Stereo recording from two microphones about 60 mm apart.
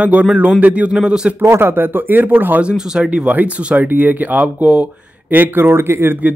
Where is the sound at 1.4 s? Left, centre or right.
Right.